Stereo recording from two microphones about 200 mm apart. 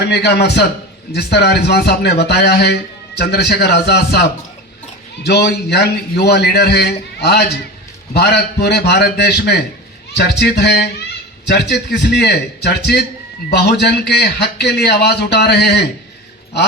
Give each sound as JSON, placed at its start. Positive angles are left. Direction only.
{"t": 0.0, "sound": "a man's voice", "side_deg": 55}